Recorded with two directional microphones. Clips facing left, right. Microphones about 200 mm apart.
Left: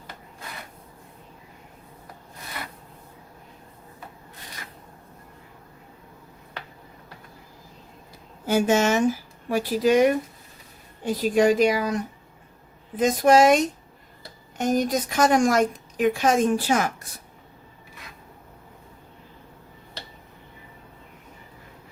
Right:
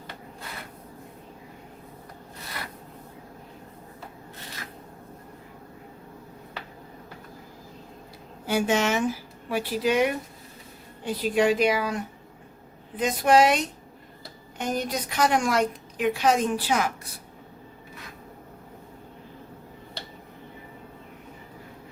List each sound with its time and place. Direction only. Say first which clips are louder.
8.4 s a woman's voice: left 4 dB; 45° left (ahead or behind)
13.0 s a woman's voice: left 3 dB; 45° left (ahead or behind)
14.6 s a woman's voice: left 6 dB; 45° left (ahead or behind)